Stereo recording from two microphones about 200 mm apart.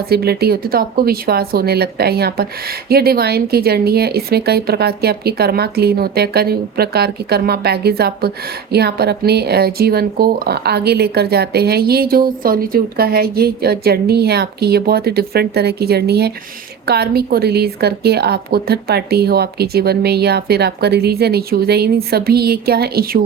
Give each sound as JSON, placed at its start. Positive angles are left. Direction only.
{"t": 0.1, "sound": "speech", "side_deg": -50}